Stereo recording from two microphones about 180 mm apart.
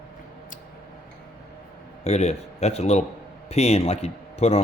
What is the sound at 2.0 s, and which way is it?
A man's voice, 35° left (ahead or behind).